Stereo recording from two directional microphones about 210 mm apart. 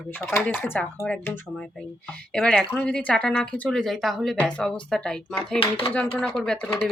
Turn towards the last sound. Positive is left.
turn(degrees=5)  # may be behind; listen again after turning